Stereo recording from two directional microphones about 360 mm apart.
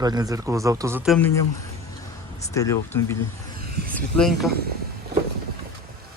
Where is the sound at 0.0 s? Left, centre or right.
Centre.